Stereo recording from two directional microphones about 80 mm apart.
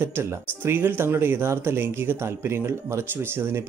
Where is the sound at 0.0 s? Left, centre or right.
Right.